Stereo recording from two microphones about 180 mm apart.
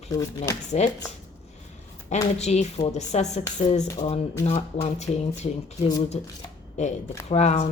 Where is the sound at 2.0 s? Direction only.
35° left (ahead or behind).